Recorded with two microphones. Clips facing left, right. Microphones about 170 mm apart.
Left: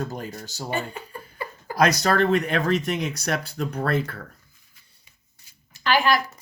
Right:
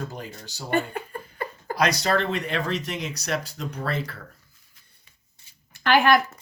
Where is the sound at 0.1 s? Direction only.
45° left (ahead or behind).